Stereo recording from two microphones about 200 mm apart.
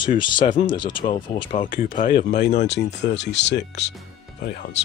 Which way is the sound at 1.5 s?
40° left (ahead or behind).